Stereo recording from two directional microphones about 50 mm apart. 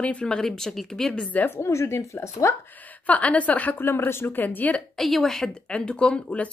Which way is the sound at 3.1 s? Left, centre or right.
Left.